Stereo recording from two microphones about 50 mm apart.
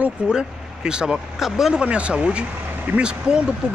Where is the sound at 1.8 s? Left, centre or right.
Right.